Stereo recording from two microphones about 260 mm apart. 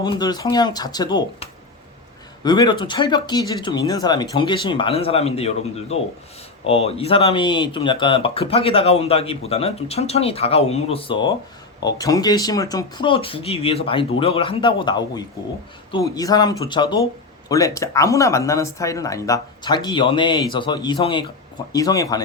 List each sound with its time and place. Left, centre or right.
0.0 s speech: centre